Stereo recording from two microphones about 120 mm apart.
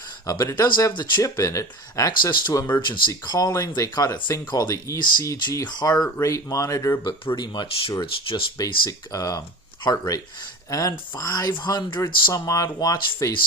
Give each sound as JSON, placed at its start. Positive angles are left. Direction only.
{"t": 0.3, "sound": "speech", "side_deg": 25}
{"t": 3.1, "sound": "speech", "side_deg": 30}
{"t": 7.3, "sound": "speech", "side_deg": 35}
{"t": 8.9, "sound": "speech", "side_deg": 30}